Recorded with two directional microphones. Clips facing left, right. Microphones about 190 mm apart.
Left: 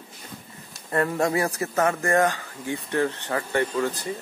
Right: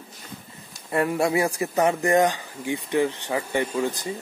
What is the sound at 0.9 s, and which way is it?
A man's voice, 10° right (ahead or behind).